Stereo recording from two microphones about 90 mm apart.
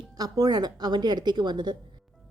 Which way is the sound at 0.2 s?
45° right (ahead or behind).